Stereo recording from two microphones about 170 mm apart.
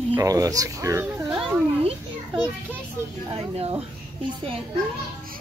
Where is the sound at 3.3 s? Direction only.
35° right (ahead or behind).